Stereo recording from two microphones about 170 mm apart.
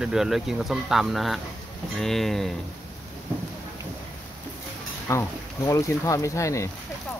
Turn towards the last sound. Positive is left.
turn(degrees=20)  # may be behind; listen again after turning